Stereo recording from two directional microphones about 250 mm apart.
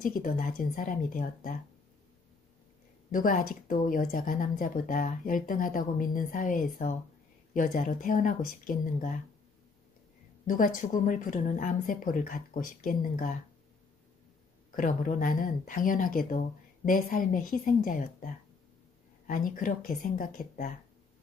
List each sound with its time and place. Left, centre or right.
0.0 s speech: left
3.1 s speech: left
10.4 s speech: left
14.7 s speech: left